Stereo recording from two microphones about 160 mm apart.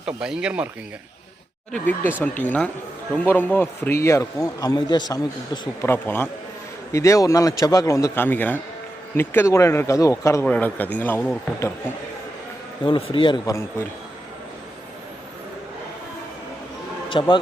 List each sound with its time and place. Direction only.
0.0 s speech: 5° right (ahead or behind)
1.7 s a man's voice: 10° left (ahead or behind)
5.8 s a man's voice: 15° left (ahead or behind)
12.8 s a man's voice: 30° left (ahead or behind)
17.1 s a man's voice: 30° left (ahead or behind)